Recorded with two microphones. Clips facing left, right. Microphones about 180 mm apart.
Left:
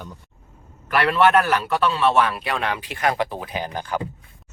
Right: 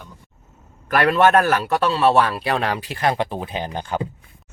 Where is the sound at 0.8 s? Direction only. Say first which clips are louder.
Right 2 dB; 45° right (ahead or behind); by 4.0 s 25° right (ahead or behind).